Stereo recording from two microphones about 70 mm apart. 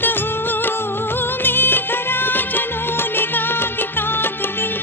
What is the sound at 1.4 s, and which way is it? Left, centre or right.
Music of bollywood, left.